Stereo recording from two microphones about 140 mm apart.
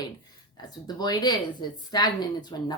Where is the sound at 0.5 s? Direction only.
30° left (ahead or behind).